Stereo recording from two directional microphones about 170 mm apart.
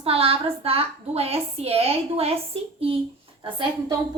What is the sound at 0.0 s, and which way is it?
A woman's voice, 35° right (ahead or behind).